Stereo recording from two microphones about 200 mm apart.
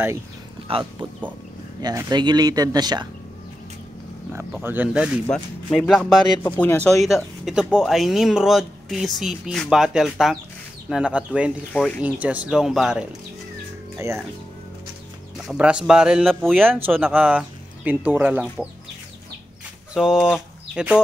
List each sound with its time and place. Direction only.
0.7 s speech: 25° right (ahead or behind)
4.6 s speech: 5° right (ahead or behind)
13.9 s speech: 15° right (ahead or behind)
15.3 s speech: 5° right (ahead or behind)
19.9 s speech: 5° right (ahead or behind)